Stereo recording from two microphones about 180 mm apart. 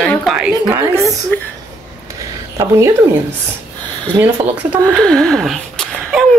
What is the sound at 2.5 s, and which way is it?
Speech, 15° right (ahead or behind).